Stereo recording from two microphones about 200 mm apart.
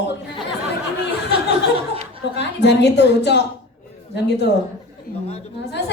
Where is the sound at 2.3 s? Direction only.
60° left (ahead or behind).